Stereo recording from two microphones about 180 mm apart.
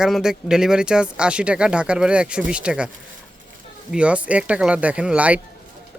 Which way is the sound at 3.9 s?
5° right (ahead or behind).